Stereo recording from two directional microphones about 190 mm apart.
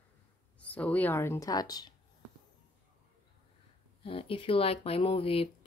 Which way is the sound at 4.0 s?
30° left (ahead or behind).